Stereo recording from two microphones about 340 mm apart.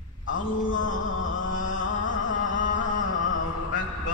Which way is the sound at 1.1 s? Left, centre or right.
Left.